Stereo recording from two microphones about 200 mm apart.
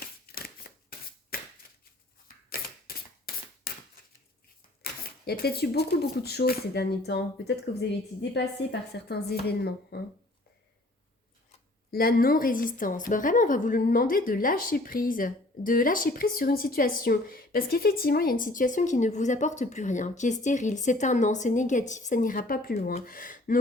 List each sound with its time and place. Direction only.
0.0 s shuffling cards: 50° left (ahead or behind)
2.2 s a sound: 50° left (ahead or behind)
4.8 s a woman's voice: 50° left (ahead or behind)
11.9 s a woman's voice: 50° left (ahead or behind)